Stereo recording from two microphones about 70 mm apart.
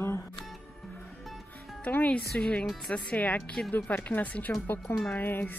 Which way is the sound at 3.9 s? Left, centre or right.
Left.